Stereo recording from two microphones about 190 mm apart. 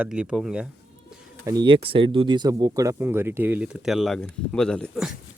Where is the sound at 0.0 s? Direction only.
5° right (ahead or behind).